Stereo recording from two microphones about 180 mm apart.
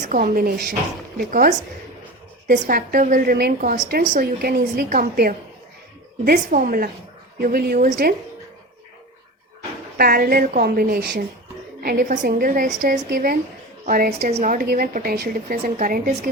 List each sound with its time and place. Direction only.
0.0 s a woman's voice: 50° right (ahead or behind)
6.3 s a woman's voice: 45° right (ahead or behind)
10.0 s a woman's voice: 55° right (ahead or behind)
14.2 s a woman's voice: 35° right (ahead or behind); by 15.5 s 60° right (ahead or behind)
15.6 s a woman's voice: 50° right (ahead or behind)